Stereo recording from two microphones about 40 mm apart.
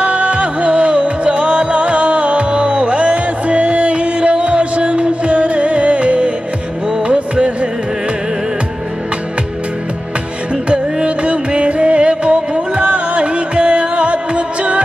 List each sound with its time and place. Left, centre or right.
0.0 s music: right
10.7 s music: right